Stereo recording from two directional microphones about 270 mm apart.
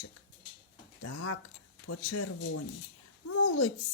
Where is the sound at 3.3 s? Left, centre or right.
Left.